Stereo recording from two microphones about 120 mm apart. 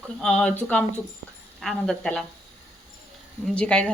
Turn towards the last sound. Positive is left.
turn(degrees=10)  # may be behind; listen again after turning